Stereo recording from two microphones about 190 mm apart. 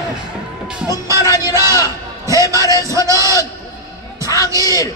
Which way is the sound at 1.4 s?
15° right (ahead or behind).